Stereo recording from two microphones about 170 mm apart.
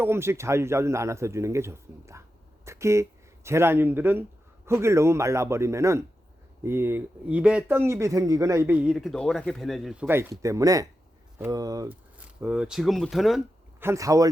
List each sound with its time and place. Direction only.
0.0 s speech: 15° right (ahead or behind)
12.1 s speech: 10° right (ahead or behind)
13.7 s speech: 15° right (ahead or behind)